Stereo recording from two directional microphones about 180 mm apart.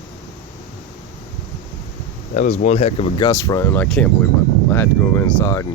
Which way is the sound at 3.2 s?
20° left (ahead or behind).